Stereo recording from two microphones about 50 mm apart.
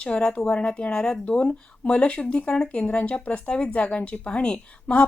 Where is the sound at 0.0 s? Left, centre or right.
Left.